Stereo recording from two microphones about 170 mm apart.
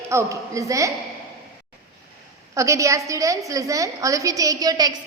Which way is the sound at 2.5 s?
20° right (ahead or behind).